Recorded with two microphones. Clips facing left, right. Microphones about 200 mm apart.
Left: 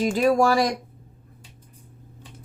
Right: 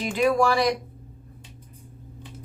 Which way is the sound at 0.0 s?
40° left (ahead or behind).